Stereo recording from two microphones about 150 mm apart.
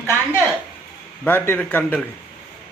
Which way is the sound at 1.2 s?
10° left (ahead or behind).